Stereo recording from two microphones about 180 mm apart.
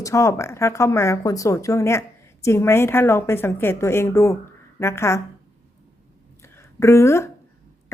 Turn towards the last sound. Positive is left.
turn(degrees=15)  # may be behind; listen again after turning